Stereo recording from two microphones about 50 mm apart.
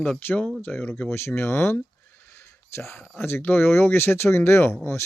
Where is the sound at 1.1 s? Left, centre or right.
Left.